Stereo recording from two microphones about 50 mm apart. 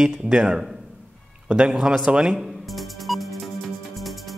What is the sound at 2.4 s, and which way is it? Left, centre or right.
Music, centre.